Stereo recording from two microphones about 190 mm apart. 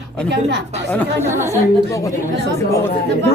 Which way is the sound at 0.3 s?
65° right (ahead or behind).